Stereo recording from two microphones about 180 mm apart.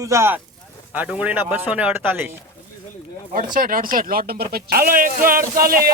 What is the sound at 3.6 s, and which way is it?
Speech, 50° right (ahead or behind).